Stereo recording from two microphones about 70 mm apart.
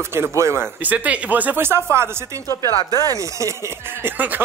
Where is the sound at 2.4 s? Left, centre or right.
Left.